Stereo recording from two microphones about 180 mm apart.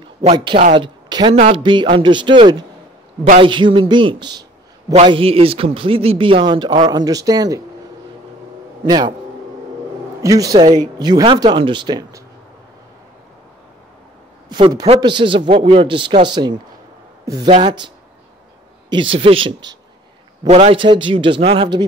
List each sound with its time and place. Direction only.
0.0 s a man's voice: 30° right (ahead or behind)
8.8 s a man's voice: 25° right (ahead or behind)
10.2 s a man's voice: 20° right (ahead or behind)
14.5 s a man's voice: 20° right (ahead or behind)
17.2 s a sound: 20° right (ahead or behind)
17.5 s a man's voice: 30° right (ahead or behind)
20.4 s a man's voice: 35° right (ahead or behind)